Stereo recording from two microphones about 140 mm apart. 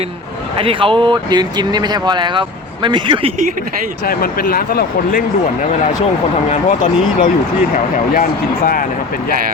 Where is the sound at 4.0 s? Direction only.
90° left.